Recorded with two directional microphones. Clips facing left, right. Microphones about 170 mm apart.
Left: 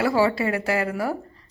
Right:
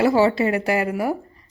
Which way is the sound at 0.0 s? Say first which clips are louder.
Right 4 dB; 20° right (ahead or behind).